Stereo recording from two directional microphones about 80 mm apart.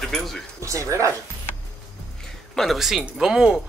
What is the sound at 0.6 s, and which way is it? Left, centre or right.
Speech, right.